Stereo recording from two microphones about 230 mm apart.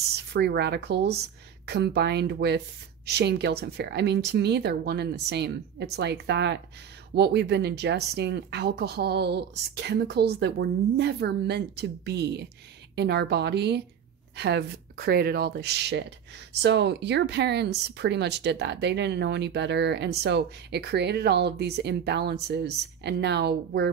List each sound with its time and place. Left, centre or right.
0.3 s speech: right